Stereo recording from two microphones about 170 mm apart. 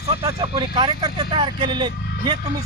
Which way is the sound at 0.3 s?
35° right (ahead or behind).